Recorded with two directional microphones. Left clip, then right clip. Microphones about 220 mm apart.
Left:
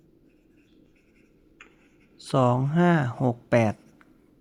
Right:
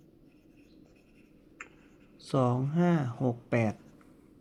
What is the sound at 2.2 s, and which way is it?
Speech, 20° left (ahead or behind).